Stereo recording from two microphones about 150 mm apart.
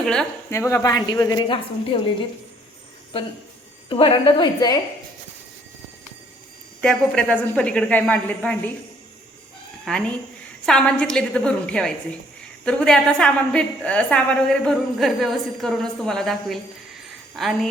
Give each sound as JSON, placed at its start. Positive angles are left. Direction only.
{"t": 0.0, "sound": "a woman's voice", "side_deg": 5}
{"t": 0.5, "sound": "a woman's voice", "side_deg": 20}
{"t": 3.8, "sound": "a woman's voice", "side_deg": 35}
{"t": 6.8, "sound": "a woman's voice", "side_deg": 5}
{"t": 9.8, "sound": "a woman's voice", "side_deg": 5}